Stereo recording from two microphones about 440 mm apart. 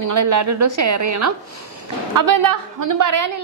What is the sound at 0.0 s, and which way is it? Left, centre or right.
A woman's voice, right.